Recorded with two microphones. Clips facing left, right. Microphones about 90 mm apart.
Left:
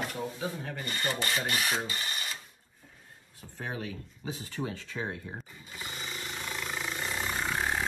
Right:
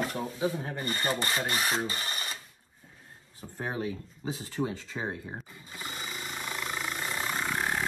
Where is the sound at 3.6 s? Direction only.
25° right (ahead or behind).